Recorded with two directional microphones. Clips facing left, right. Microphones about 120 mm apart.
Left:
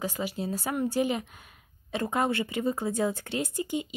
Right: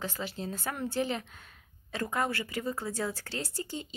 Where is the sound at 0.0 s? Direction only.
10° left (ahead or behind).